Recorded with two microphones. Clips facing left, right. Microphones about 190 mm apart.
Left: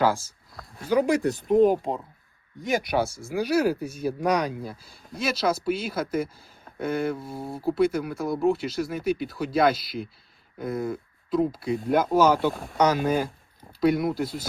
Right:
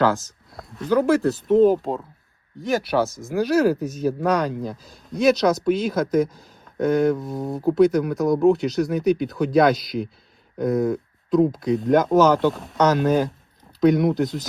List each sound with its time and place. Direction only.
0.0 s speech: 10° left (ahead or behind)
7.3 s speech: 45° right (ahead or behind)
7.8 s speech: 5° left (ahead or behind)
8.0 s speech: 45° right (ahead or behind)
8.4 s speech: 5° left (ahead or behind)